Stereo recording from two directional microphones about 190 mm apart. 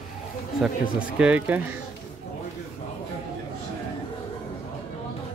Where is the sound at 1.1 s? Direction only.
5° right (ahead or behind).